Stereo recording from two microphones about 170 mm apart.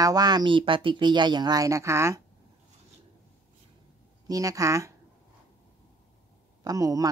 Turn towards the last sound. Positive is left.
turn(degrees=-20)  # may be behind; listen again after turning